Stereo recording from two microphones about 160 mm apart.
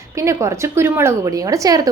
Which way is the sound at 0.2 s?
20° right (ahead or behind).